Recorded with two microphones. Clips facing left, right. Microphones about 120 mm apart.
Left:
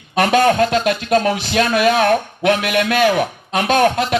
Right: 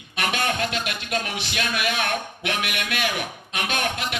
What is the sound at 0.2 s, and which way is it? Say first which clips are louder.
Speech: left 12 dB; 40° left (ahead or behind).